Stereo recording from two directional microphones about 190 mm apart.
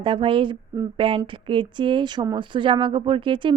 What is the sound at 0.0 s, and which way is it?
A woman's voice, 25° right (ahead or behind).